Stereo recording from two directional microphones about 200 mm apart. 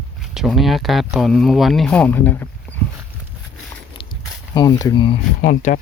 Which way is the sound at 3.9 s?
25° left (ahead or behind).